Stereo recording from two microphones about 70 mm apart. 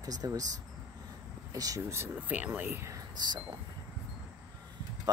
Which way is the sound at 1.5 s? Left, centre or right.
Right.